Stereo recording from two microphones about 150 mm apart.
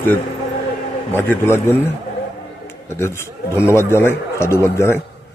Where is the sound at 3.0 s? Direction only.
15° left (ahead or behind).